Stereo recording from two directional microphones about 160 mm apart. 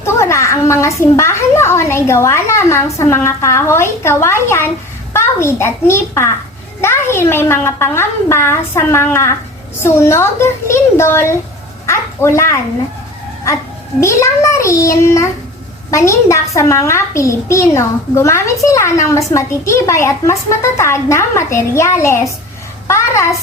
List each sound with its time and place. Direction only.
0.0 s a child's voice: 15° left (ahead or behind)
14.0 s a child's voice: 20° left (ahead or behind)
22.9 s a sound: 15° left (ahead or behind)